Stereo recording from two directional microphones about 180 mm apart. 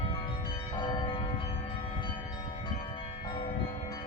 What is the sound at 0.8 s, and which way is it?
Church bell, 25° left (ahead or behind).